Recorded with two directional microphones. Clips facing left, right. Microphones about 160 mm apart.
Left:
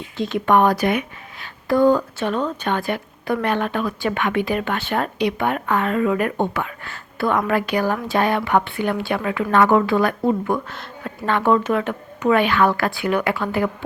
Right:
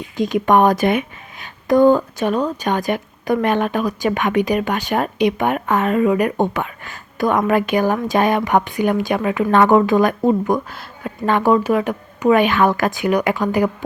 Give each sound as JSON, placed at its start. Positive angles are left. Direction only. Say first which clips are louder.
{"t": 0.2, "sound": "a woman's voice", "louder": "right 3 dB", "side_deg": -15}